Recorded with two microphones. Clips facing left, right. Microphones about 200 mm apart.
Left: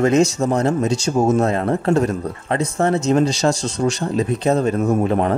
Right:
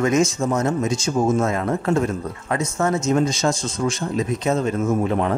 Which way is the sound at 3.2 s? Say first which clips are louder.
Left 3 dB; 70° left (ahead or behind).